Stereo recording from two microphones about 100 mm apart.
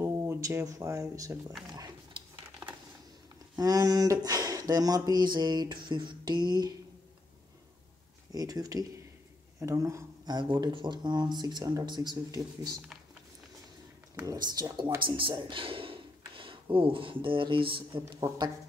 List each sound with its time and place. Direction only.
0.0 s speech: 25° right (ahead or behind)
1.7 s a sound: 40° right (ahead or behind)
3.5 s speech: 40° right (ahead or behind)
8.3 s speech: 40° right (ahead or behind)
10.2 s speech: 45° right (ahead or behind)
14.2 s speech: 40° right (ahead or behind)
15.0 s speech: 60° right (ahead or behind)